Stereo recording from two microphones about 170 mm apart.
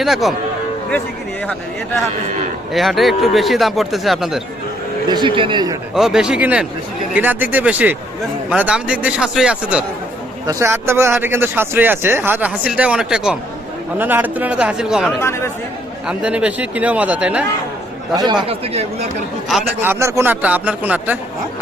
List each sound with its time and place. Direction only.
0.0 s speech: centre (ahead or behind)
2.7 s speech: centre (ahead or behind)
5.0 s a man's voice: 25° right (ahead or behind)
5.9 s speech: 5° right (ahead or behind)
10.4 s speech: 20° right (ahead or behind)
15.2 s speech: 15° left (ahead or behind)
16.0 s speech: 5° right (ahead or behind)
18.1 s speech: 25° right (ahead or behind)
19.8 s speech: 15° right (ahead or behind)